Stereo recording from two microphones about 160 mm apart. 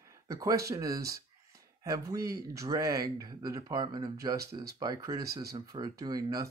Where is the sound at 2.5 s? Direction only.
20° right (ahead or behind).